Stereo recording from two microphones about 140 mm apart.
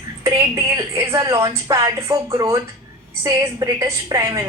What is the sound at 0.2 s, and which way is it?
A woman's voice, 20° right (ahead or behind).